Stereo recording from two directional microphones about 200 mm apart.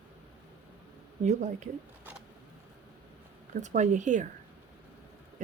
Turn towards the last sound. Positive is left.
turn(degrees=-40)  # may be behind; listen again after turning